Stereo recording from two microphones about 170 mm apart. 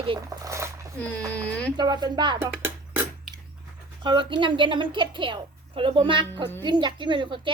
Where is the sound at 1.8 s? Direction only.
25° right (ahead or behind).